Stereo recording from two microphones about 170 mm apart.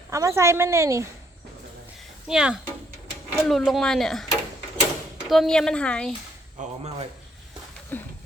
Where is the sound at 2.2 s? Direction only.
5° right (ahead or behind).